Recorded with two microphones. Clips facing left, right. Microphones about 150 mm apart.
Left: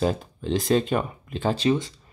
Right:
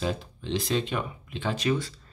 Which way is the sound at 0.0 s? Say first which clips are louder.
Left 6 dB; 45° left (ahead or behind).